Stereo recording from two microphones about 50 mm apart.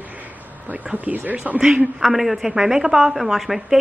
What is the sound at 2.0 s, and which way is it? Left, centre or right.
A woman's voice, centre.